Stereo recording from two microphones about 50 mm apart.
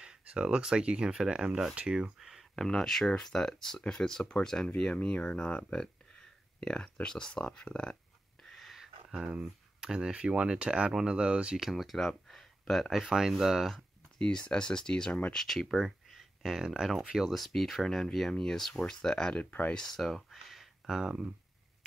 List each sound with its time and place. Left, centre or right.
0.0 s speech: centre
2.1 s a sound: centre
2.5 s speech: centre
8.5 s a sound: centre
10.0 s speech: centre
11.5 s speech: centre
12.3 s a sound: centre
13.1 s speech: centre
14.1 s speech: centre
15.3 s speech: centre
19.3 s speech: left
19.7 s speech: centre
21.0 s speech: right